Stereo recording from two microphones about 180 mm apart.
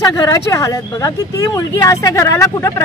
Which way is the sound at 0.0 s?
15° left (ahead or behind).